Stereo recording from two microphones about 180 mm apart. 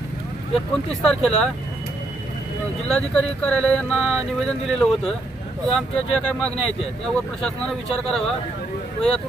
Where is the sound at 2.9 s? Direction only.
5° left (ahead or behind).